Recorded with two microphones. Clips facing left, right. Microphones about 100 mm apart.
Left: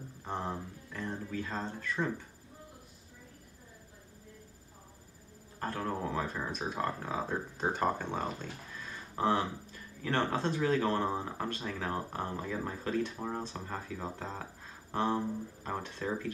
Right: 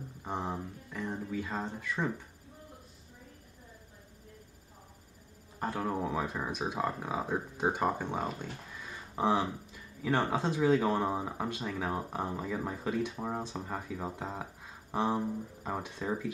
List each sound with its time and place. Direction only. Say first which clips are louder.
0.2 s speech: right 1 dB; 10° right (ahead or behind)
5.6 s speech: right 2 dB; 10° right (ahead or behind)